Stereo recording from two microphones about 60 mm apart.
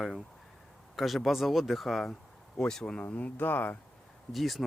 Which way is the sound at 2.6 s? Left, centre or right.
Centre.